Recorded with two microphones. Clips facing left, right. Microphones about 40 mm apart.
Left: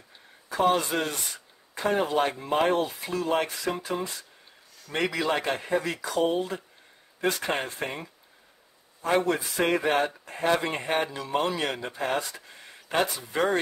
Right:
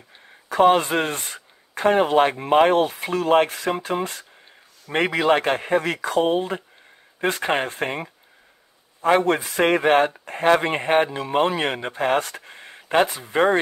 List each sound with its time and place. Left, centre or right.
0.5 s speech: right
4.8 s speech: right